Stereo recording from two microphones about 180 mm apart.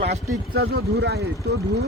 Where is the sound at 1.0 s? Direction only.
65° right (ahead or behind).